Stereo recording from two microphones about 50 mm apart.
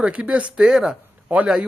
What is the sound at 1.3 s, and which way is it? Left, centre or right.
Speech, right.